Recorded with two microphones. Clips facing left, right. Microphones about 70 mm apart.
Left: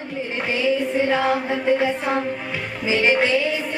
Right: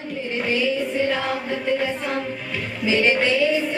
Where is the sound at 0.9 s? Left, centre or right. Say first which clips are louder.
Left 3 dB; centre.